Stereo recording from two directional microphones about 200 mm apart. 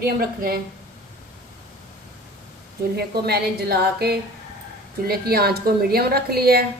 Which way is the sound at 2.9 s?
50° right (ahead or behind).